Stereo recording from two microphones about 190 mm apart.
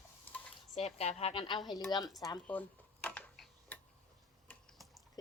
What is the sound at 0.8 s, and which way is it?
A woman's voice, 35° left (ahead or behind).